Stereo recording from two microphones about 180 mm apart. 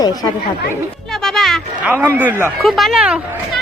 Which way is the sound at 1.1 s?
Centre (ahead or behind).